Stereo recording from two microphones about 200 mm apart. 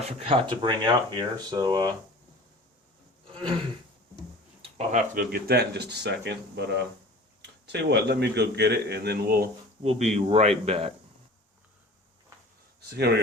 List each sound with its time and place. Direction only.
0.2 s speech: 25° right (ahead or behind)
4.6 s a sound: 30° right (ahead or behind)
5.1 s a man's voice: 50° right (ahead or behind)
9.8 s speech: 35° right (ahead or behind)
13.0 s a man's voice: 55° right (ahead or behind)